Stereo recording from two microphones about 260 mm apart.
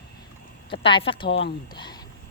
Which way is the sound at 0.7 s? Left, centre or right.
Centre.